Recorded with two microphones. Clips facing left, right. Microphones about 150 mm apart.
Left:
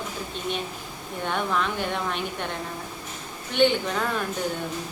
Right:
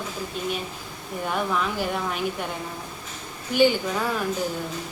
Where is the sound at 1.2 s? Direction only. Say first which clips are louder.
Even; 5° right (ahead or behind).